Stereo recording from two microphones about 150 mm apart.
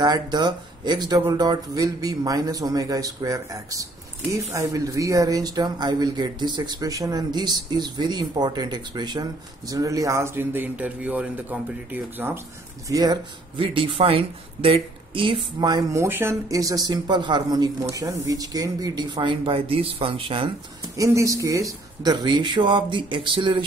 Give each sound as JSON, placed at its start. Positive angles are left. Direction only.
{"t": 0.0, "sound": "speech", "side_deg": -30}
{"t": 12.8, "sound": "speech", "side_deg": -25}
{"t": 20.9, "sound": "speech", "side_deg": -20}